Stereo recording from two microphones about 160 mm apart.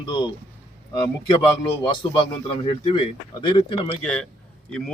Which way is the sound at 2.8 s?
30° left (ahead or behind).